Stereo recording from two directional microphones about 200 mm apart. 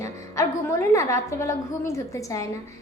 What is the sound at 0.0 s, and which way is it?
A woman's voice, 15° left (ahead or behind).